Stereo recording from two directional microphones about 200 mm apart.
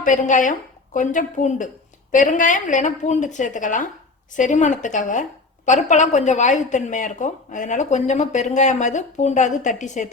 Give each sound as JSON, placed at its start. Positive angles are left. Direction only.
{"t": 0.0, "sound": "a woman's voice", "side_deg": 40}